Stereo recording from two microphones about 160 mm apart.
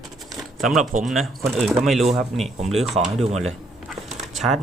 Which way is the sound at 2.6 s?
40° right (ahead or behind).